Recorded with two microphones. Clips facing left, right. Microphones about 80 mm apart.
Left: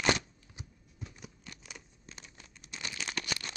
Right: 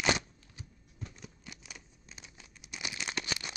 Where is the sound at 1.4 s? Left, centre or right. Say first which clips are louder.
Even; centre.